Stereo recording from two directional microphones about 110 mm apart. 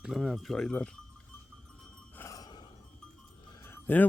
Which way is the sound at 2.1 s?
30° left (ahead or behind).